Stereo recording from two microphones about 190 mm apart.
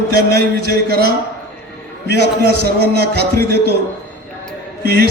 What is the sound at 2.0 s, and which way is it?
Speech, 65° left (ahead or behind).